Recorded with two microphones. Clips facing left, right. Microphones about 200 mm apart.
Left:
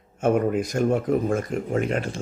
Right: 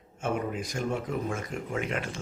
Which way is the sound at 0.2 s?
55° left (ahead or behind).